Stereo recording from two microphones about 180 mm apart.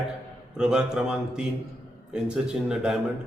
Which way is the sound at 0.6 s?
5° right (ahead or behind).